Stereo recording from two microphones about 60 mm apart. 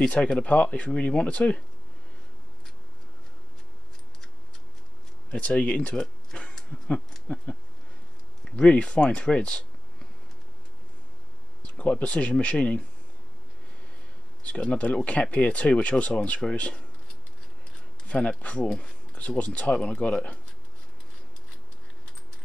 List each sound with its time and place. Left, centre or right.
0.0 s speech: centre
5.3 s speech: centre
11.8 s speech: left
14.4 s speech: centre
18.0 s speech: left